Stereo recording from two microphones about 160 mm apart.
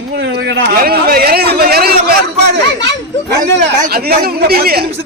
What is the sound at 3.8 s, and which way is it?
Speech, 70° right (ahead or behind).